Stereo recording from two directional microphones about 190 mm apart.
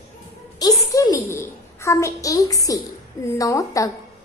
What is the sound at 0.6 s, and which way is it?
A woman's voice, 20° left (ahead or behind).